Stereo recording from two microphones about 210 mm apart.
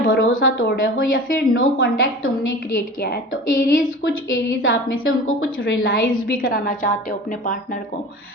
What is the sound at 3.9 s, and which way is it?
Speech, 65° left (ahead or behind).